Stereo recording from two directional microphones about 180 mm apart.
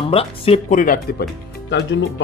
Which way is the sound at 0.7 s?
50° left (ahead or behind).